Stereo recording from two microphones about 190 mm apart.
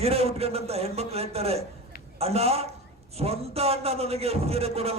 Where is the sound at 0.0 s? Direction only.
30° right (ahead or behind).